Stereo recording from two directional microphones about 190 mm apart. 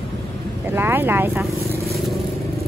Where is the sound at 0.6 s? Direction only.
10° right (ahead or behind).